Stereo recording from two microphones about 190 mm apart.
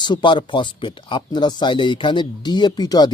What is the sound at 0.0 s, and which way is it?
Speech, 25° left (ahead or behind).